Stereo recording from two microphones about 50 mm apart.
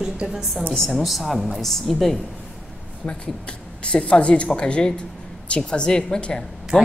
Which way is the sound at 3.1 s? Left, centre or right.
Left.